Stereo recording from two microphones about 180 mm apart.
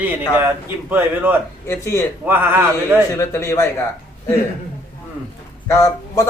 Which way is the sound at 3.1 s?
15° left (ahead or behind).